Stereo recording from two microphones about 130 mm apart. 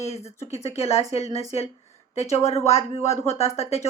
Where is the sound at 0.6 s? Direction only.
50° left (ahead or behind).